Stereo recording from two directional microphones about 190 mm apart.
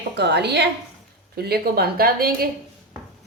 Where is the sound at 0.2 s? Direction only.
60° right (ahead or behind).